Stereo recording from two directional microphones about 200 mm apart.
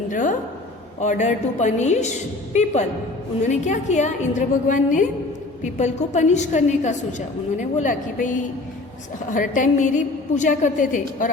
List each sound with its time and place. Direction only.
0.1 s a woman's voice: 40° left (ahead or behind)
3.4 s a woman's voice: 35° left (ahead or behind)